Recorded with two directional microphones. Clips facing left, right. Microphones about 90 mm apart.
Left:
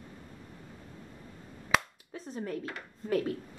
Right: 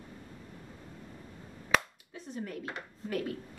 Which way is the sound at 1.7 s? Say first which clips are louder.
Even; centre (ahead or behind).